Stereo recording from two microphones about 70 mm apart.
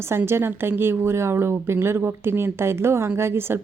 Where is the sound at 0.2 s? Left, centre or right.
Right.